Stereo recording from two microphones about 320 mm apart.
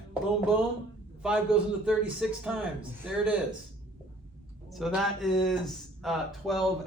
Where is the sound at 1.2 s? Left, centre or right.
Centre.